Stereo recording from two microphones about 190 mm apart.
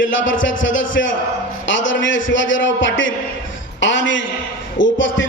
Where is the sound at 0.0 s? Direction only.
85° left.